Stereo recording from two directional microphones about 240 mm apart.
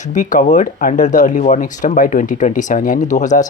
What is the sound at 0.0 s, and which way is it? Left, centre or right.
Speech, left.